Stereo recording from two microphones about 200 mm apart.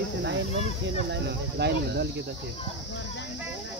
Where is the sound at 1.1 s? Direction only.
60° right (ahead or behind).